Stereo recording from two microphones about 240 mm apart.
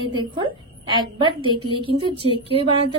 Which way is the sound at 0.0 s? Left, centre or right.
Centre.